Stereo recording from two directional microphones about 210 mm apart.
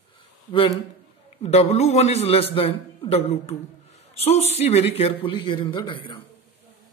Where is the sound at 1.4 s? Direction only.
30° left (ahead or behind).